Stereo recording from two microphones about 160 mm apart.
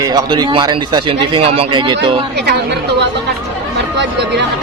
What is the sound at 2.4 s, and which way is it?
Speech, 90° right.